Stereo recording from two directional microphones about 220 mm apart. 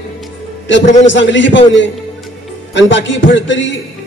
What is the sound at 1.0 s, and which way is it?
A man's voice, 55° left (ahead or behind).